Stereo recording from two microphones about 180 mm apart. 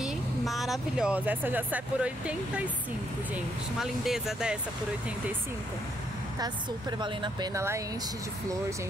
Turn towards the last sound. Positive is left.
turn(degrees=-15)  # may be behind; listen again after turning